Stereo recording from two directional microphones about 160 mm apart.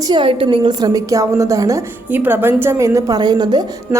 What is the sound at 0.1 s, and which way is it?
A woman's voice, 35° right (ahead or behind).